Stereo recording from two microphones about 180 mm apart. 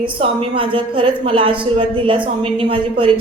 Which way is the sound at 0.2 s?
30° right (ahead or behind).